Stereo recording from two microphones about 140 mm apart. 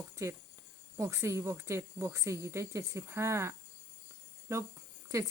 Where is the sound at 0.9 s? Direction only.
20° right (ahead or behind).